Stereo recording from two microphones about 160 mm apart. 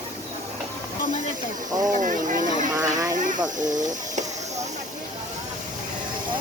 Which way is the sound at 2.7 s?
25° right (ahead or behind).